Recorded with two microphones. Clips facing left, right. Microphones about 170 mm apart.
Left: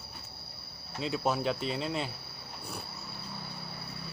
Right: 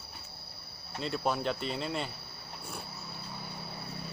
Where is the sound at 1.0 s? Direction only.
5° left (ahead or behind).